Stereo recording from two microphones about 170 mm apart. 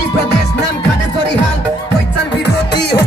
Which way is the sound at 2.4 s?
75° left (ahead or behind).